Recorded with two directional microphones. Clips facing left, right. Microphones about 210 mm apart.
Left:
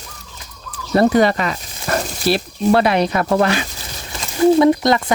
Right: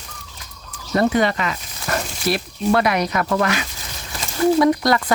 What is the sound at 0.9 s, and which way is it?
Speech, 35° left (ahead or behind).